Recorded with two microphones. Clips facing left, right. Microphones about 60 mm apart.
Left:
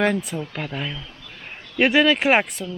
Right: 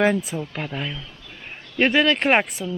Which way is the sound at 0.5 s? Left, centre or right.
Centre.